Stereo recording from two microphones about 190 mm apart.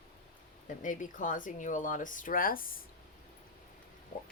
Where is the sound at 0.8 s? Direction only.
45° left (ahead or behind).